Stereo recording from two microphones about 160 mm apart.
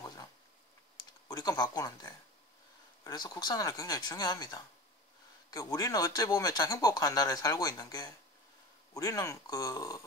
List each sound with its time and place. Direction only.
1.3 s speech: 25° left (ahead or behind)